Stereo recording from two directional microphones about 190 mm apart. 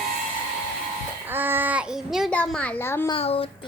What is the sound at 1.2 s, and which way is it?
A woman's voice, 10° right (ahead or behind).